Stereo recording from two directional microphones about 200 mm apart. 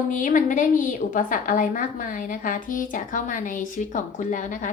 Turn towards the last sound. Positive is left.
turn(degrees=40)  # may be behind; listen again after turning